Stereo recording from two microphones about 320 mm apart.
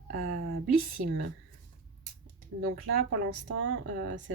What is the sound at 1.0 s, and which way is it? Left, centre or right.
Speech, right.